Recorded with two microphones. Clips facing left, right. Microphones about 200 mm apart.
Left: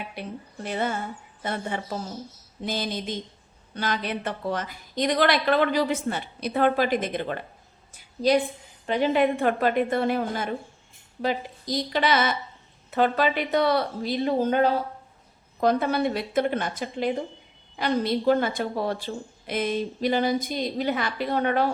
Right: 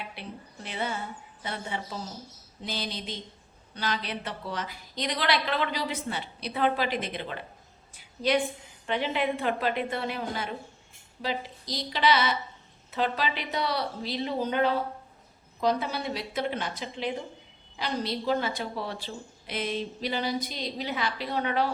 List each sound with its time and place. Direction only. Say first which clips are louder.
0.2 s a woman's voice: left 6 dB; 45° left (ahead or behind)
7.9 s a woman's voice: left 5 dB; 35° left (ahead or behind)
15.6 s a woman's voice: left 6 dB; 55° left (ahead or behind)